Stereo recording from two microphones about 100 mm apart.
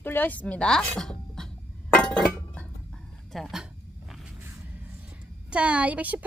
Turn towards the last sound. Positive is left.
turn(degrees=-15)  # may be behind; listen again after turning